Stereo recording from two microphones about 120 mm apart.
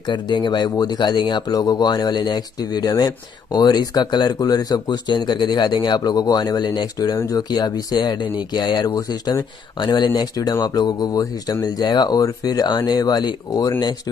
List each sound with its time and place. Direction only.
0.1 s speech: 40° left (ahead or behind)